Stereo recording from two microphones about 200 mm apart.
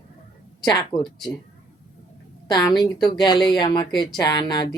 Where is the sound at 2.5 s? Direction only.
20° left (ahead or behind).